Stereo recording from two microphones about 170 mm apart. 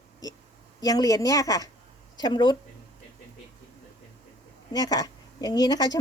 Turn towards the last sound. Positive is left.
turn(degrees=25)  # may be behind; listen again after turning